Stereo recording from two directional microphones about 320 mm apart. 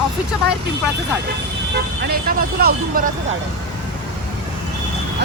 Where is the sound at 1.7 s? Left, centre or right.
Right.